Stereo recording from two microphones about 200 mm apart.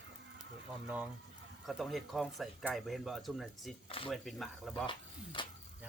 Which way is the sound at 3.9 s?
25° left (ahead or behind).